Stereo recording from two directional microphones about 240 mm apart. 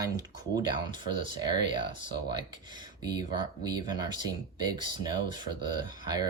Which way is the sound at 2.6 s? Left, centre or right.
Centre.